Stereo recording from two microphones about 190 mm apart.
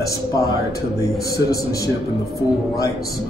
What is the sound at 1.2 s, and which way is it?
Speech, 55° left (ahead or behind).